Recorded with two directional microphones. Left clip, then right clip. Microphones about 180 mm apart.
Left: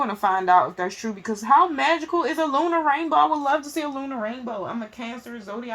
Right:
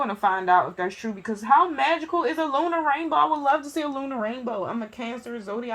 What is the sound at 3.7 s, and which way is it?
Speech, 30° right (ahead or behind).